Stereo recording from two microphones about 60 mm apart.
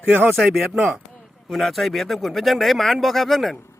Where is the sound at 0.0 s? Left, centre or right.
Right.